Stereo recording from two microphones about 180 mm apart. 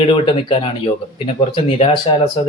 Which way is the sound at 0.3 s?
30° left (ahead or behind).